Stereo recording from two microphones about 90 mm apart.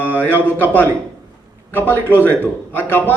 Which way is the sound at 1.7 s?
20° left (ahead or behind).